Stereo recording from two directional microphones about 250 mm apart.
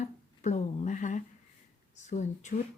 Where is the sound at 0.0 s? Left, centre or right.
Left.